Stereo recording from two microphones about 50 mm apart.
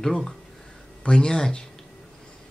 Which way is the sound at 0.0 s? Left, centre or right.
Centre.